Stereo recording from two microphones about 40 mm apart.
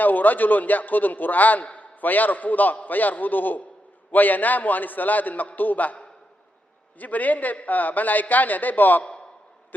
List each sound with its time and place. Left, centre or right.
0.0 s a man's voice: left
7.0 s a man's voice: left